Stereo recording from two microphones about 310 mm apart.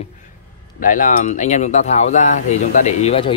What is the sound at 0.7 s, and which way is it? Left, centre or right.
Speech, left.